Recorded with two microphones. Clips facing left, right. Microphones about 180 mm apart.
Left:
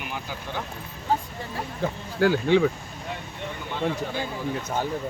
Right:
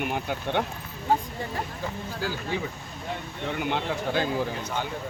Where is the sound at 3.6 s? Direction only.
75° right (ahead or behind).